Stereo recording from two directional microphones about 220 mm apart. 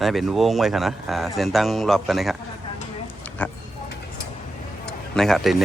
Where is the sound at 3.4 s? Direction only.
5° left (ahead or behind).